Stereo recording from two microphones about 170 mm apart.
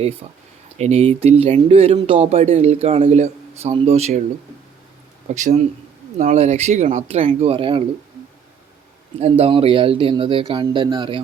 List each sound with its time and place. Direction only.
0.2 s speech: 40° right (ahead or behind)
5.3 s speech: 45° right (ahead or behind)
9.4 s speech: 35° right (ahead or behind)